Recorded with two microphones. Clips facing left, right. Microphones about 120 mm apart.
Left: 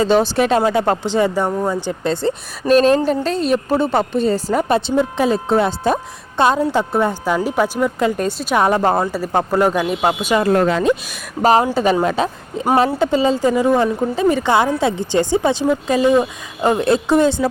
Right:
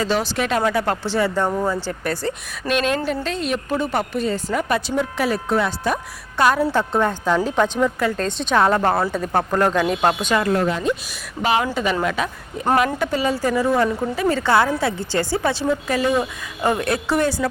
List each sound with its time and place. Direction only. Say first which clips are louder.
0.0 s a woman's voice: left 7 dB; 30° left (ahead or behind)
2.6 s a woman's voice: left 8 dB; 35° left (ahead or behind); by 10.3 s 5° left (ahead or behind)
10.7 s speech: left 5 dB; 90° left
11.4 s a woman's voice: left 6 dB; 35° left (ahead or behind)